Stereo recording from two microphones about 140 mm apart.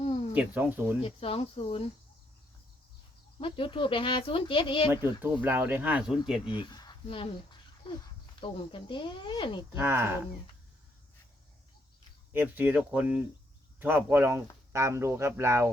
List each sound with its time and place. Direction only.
0.3 s speech: 10° right (ahead or behind)
1.0 s speech: 40° left (ahead or behind)
3.3 s speech: 40° left (ahead or behind)
5.2 s speech: 15° right (ahead or behind)
6.4 s a sound: 35° left (ahead or behind)
8.4 s speech: 35° left (ahead or behind)
9.7 s speech: 15° right (ahead or behind)
12.3 s speech: 15° right (ahead or behind)